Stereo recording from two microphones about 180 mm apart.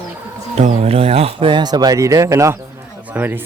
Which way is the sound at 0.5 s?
40° right (ahead or behind).